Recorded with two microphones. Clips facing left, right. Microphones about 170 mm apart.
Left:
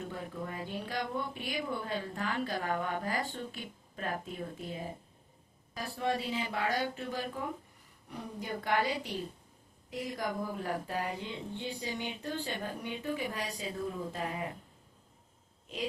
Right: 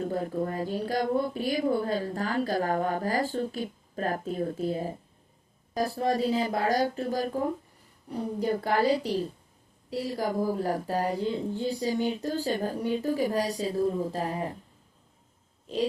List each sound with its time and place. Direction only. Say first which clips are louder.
0.0 s speech: right 10 dB; 40° right (ahead or behind)